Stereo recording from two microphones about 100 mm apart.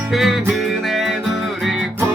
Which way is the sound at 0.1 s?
Centre (ahead or behind).